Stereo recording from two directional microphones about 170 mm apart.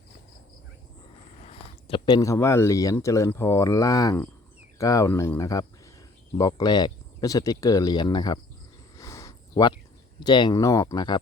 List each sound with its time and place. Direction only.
1.5 s speech: 30° left (ahead or behind)
9.0 s a sound: 20° left (ahead or behind)
10.2 s speech: 25° left (ahead or behind)